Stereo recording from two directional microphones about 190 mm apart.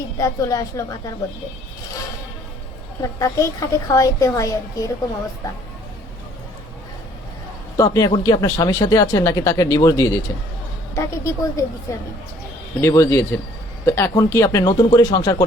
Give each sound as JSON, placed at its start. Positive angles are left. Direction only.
{"t": 0.2, "sound": "a woman's voice", "side_deg": 15}
{"t": 3.0, "sound": "a woman's voice", "side_deg": 15}
{"t": 7.8, "sound": "a woman's voice", "side_deg": 20}